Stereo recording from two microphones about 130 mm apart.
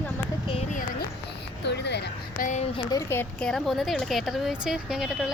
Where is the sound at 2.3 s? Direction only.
90° left.